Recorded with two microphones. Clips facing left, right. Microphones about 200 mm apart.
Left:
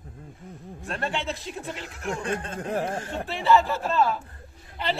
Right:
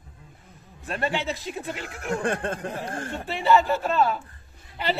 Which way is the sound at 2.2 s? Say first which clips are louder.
Right 6 dB; 55° right (ahead or behind).